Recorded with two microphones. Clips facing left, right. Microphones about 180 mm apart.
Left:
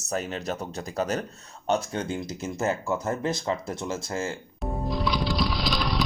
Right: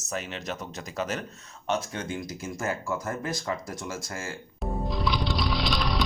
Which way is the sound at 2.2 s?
20° left (ahead or behind).